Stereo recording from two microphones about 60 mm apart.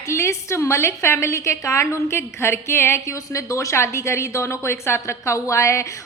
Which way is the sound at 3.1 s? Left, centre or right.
Left.